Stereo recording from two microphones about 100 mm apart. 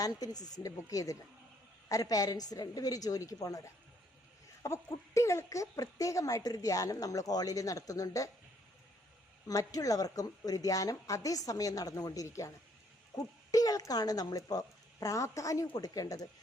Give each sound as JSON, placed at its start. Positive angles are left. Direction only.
{"t": 0.0, "sound": "speech", "side_deg": 40}
{"t": 9.5, "sound": "speech", "side_deg": 35}